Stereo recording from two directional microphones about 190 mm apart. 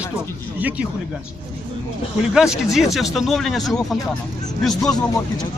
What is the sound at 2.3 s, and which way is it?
Speech, 5° right (ahead or behind).